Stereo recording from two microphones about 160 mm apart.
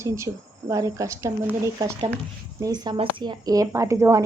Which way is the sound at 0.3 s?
20° right (ahead or behind).